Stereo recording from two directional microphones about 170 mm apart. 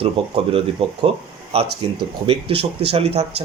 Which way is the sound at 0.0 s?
35° right (ahead or behind).